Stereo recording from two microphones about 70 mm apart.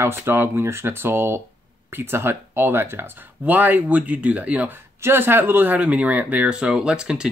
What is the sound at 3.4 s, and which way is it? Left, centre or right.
Speech, right.